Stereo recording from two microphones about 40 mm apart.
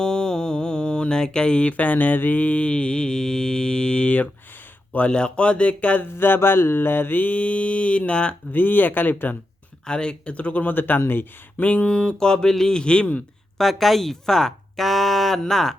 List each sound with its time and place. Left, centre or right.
0.0 s mantra: centre
1.6 s mantra: left
6.1 s mantra: left
8.5 s mantra: left
9.8 s mantra: left
10.3 s mantra: left
11.0 s speech: left
11.5 s mantra: left
13.6 s speech: centre